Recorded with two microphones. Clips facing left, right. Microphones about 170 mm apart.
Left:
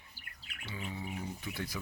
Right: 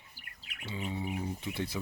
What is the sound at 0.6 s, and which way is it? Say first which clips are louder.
Speech: right 5 dB; 25° right (ahead or behind).